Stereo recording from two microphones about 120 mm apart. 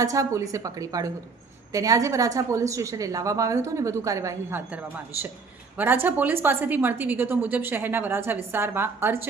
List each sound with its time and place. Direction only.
0.0 s a woman's voice: 30° right (ahead or behind)